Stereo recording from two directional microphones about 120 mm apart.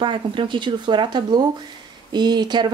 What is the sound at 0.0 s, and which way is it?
Speech, 45° right (ahead or behind).